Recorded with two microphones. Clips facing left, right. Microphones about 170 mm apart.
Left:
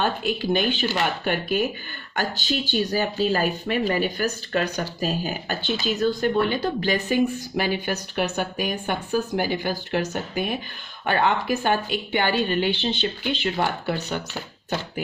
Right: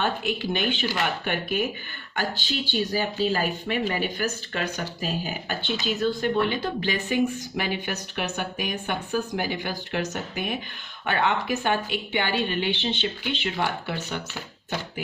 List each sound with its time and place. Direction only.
0.0 s speech: 35° left (ahead or behind)